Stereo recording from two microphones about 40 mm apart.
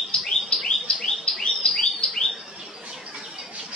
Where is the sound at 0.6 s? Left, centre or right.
Centre.